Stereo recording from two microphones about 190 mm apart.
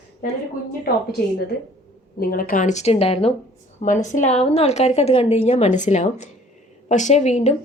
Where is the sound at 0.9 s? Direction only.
50° left (ahead or behind).